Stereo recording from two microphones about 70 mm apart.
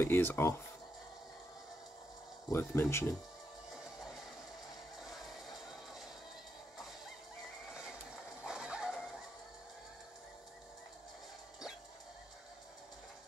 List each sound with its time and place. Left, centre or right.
0.0 s speech: left
2.5 s speech: left
5.0 s vehicle: centre
8.5 s a sound: centre